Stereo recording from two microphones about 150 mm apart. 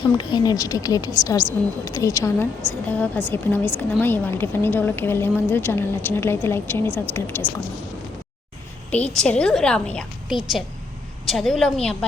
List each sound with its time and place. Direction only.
0.2 s a woman's voice: 30° left (ahead or behind)
8.9 s a woman's voice: 10° left (ahead or behind)